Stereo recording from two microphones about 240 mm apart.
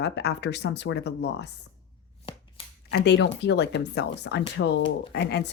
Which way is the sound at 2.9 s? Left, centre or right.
Left.